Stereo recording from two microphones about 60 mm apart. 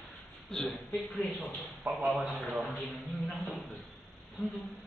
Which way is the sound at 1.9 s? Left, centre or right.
Right.